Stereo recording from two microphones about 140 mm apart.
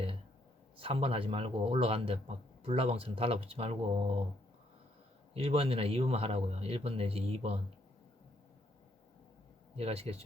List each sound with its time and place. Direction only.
0.8 s a man's voice: 45° right (ahead or behind)
5.3 s a man's voice: 45° right (ahead or behind)
9.7 s a man's voice: 45° right (ahead or behind)